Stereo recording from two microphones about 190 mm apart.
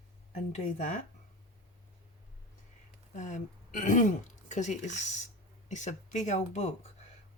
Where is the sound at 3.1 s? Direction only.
40° left (ahead or behind).